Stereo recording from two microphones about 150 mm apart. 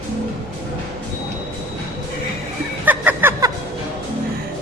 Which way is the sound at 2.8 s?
10° right (ahead or behind).